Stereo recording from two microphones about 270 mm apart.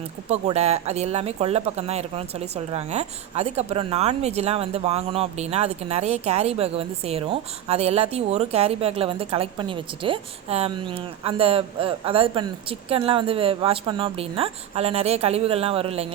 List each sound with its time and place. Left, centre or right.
0.3 s speech: right